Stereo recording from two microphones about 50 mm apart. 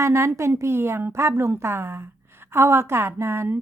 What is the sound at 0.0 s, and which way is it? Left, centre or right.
A woman's voice, right.